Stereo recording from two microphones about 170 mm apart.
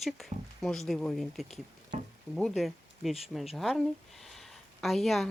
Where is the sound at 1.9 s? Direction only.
50° right (ahead or behind).